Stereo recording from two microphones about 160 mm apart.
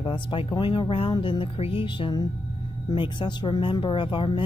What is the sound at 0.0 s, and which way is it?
Speech, 30° left (ahead or behind).